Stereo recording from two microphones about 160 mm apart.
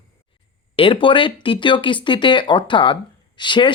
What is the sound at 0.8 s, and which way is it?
Speech, 35° left (ahead or behind).